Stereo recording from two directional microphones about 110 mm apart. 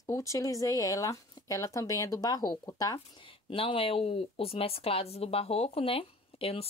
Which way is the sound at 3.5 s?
55° left (ahead or behind).